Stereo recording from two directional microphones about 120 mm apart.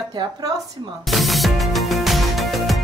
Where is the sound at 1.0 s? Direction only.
Centre (ahead or behind).